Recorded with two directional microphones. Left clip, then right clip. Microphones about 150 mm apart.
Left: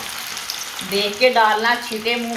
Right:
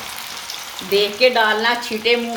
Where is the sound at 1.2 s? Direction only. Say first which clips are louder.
Left 2 dB; 75° right (ahead or behind).